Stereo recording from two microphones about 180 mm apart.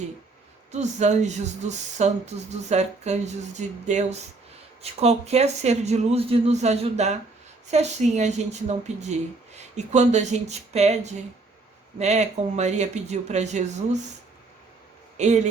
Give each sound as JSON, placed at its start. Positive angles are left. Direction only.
{"t": 0.7, "sound": "speech", "side_deg": -40}
{"t": 15.2, "sound": "speech", "side_deg": -40}